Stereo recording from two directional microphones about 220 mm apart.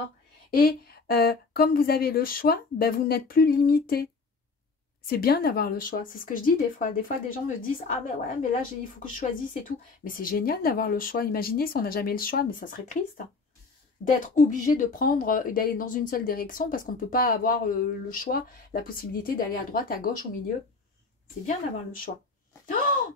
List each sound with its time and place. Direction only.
0.5 s speech: 40° left (ahead or behind)
9.7 s speech: 40° left (ahead or behind)
14.0 s speech: 35° left (ahead or behind)
21.5 s speech: 40° left (ahead or behind)